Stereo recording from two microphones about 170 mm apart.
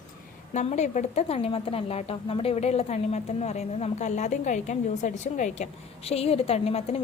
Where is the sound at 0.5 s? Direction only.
45° left (ahead or behind).